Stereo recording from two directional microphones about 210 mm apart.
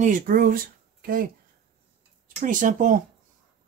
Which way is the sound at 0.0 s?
40° right (ahead or behind).